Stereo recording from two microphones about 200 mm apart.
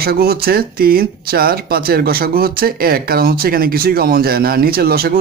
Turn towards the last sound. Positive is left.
turn(degrees=-50)  # may be behind; listen again after turning